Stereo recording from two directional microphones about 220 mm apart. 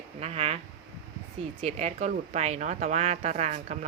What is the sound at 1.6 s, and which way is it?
Speech, 30° right (ahead or behind).